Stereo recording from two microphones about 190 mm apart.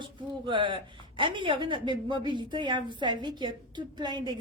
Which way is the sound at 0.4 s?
25° right (ahead or behind).